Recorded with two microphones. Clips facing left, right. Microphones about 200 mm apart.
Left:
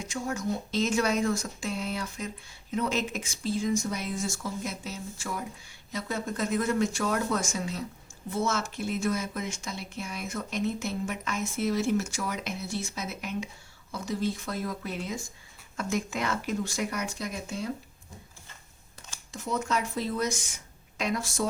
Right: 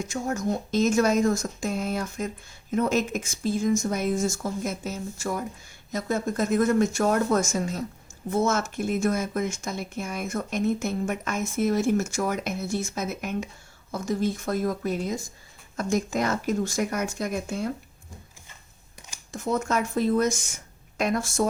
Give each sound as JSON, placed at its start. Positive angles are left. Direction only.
{"t": 0.0, "sound": "speech", "side_deg": -45}
{"t": 19.3, "sound": "speech", "side_deg": -50}